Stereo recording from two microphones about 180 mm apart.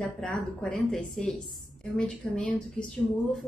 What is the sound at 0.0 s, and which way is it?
A woman's voice, 5° left (ahead or behind).